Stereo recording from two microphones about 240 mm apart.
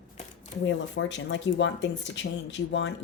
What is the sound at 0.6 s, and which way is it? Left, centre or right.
Speech, left.